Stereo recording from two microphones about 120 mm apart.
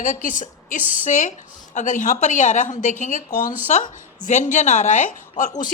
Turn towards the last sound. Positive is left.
turn(degrees=90)